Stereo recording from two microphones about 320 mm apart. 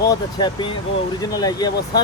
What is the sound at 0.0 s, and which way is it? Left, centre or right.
Speech, centre.